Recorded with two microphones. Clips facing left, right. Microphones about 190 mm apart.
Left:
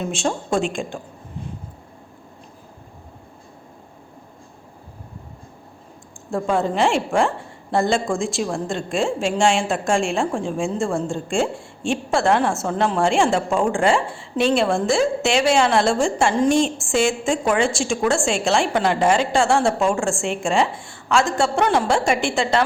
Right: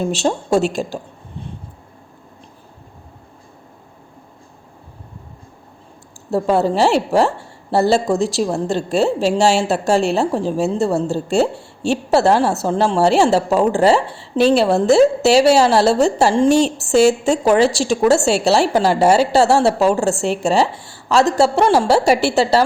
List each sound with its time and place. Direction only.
0.0 s a woman's voice: 35° right (ahead or behind)
6.3 s a woman's voice: 35° right (ahead or behind)